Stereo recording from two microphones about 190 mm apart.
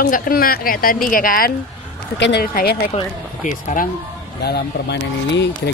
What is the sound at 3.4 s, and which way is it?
Speech, 40° left (ahead or behind).